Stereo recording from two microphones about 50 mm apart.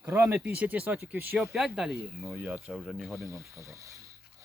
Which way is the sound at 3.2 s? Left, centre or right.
Right.